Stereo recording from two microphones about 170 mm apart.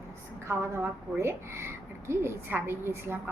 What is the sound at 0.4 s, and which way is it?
A woman's voice, 15° right (ahead or behind).